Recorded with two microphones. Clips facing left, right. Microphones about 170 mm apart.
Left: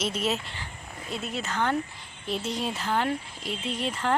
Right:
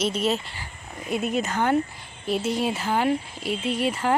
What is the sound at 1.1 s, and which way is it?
Speech, 15° right (ahead or behind).